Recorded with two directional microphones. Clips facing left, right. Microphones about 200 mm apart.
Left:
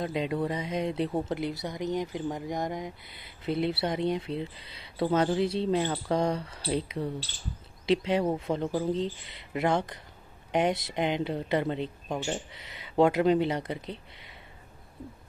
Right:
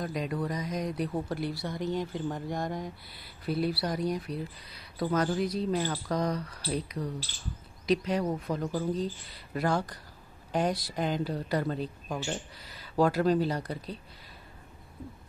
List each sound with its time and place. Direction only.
0.0 s speech: 25° left (ahead or behind)